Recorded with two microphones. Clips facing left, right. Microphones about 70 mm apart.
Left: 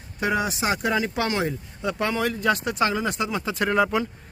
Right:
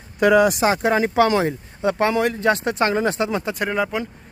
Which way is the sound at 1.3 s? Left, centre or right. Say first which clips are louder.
Right 6 dB; right.